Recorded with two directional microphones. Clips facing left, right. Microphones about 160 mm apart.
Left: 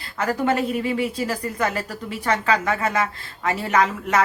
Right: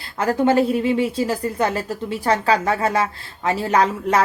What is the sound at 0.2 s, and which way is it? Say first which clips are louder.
A woman's voice: right 5 dB; 30° right (ahead or behind).